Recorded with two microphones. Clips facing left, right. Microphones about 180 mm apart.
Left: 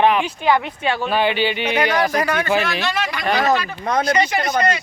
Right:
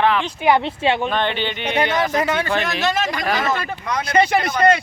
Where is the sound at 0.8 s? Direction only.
25° right (ahead or behind).